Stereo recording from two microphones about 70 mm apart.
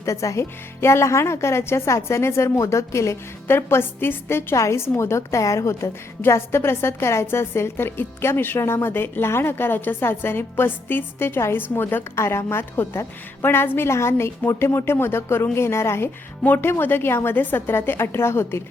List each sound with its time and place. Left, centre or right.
0.0 s a woman's voice: left
12.1 s a woman's voice: left
16.4 s a woman's voice: left